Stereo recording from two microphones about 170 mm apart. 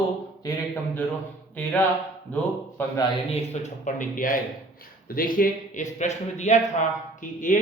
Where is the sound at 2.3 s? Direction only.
10° left (ahead or behind).